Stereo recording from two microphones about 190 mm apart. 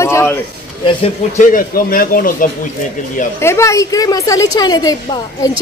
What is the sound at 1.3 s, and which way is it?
Speech, 45° left (ahead or behind).